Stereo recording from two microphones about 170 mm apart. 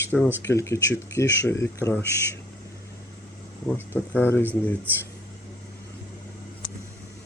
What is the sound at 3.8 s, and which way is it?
Speech, 10° left (ahead or behind).